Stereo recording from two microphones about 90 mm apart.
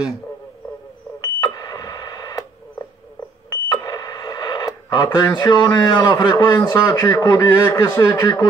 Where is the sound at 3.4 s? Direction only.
45° left (ahead or behind).